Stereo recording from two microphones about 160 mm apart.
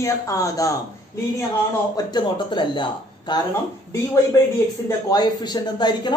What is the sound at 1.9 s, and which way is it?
Speech, 25° left (ahead or behind).